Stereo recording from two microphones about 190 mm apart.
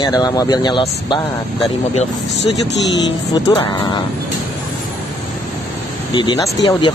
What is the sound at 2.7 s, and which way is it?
Speech, 70° left (ahead or behind).